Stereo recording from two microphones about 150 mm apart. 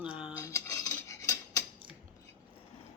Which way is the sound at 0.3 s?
20° left (ahead or behind).